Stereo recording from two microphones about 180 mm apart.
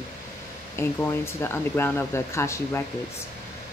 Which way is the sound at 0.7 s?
15° left (ahead or behind).